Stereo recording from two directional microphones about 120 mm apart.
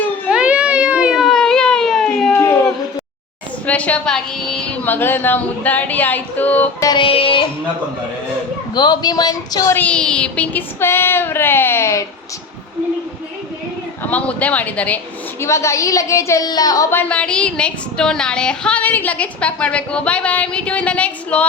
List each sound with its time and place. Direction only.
0.3 s baby cry: 10° right (ahead or behind)
2.3 s a sound: 20° left (ahead or behind)
3.7 s a woman's voice: 10° left (ahead or behind)
6.8 s music: 45° left (ahead or behind)
8.7 s speech: 35° left (ahead or behind)
9.7 s a woman's voice: 10° left (ahead or behind)
14.0 s a woman's voice: 10° left (ahead or behind); by 17.0 s 30° left (ahead or behind)
17.0 s a woman's voice: 10° left (ahead or behind)